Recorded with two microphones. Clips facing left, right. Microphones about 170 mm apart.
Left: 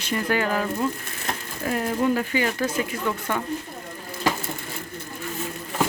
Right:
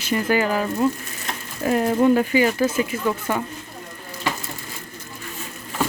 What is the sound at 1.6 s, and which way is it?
Speech, 25° right (ahead or behind).